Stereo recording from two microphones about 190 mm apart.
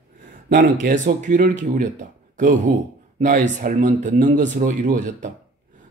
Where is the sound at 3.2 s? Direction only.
45° right (ahead or behind).